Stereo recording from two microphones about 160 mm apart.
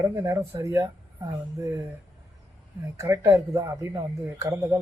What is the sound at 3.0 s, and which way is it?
Speech, 20° right (ahead or behind).